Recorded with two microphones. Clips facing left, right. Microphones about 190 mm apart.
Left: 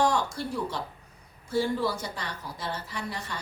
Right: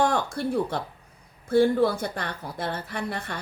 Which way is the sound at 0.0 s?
55° right (ahead or behind).